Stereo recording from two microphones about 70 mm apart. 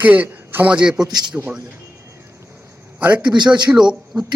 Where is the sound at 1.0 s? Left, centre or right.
Right.